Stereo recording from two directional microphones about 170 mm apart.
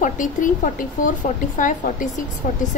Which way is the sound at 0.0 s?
50° left (ahead or behind).